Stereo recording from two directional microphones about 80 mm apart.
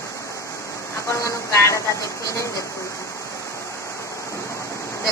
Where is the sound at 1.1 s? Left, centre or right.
Left.